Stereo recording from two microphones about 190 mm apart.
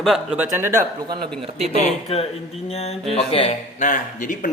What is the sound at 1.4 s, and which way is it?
Speech, 30° right (ahead or behind).